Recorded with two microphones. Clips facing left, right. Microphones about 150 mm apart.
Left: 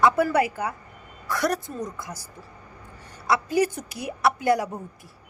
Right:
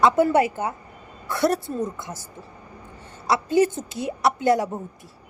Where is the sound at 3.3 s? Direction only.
25° right (ahead or behind).